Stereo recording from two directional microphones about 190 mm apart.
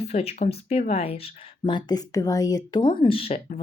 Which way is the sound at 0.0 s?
30° left (ahead or behind).